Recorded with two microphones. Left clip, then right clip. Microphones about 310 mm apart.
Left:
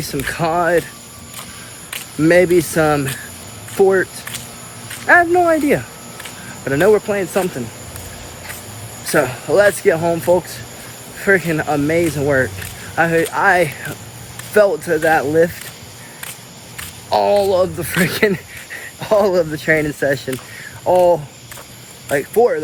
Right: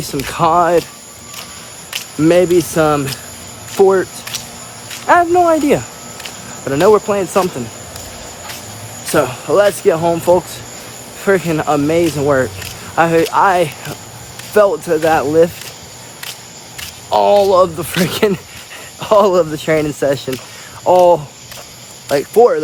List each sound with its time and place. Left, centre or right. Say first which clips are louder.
0.0 s speech: right 5 dB; centre
2.2 s speech: right 1 dB; centre
5.0 s speech: right 1 dB; centre
9.1 s speech: right 2 dB; centre
17.1 s speech: right 4 dB; centre